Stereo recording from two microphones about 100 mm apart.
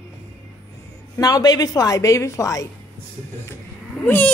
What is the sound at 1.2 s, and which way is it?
A woman's voice, 40° left (ahead or behind).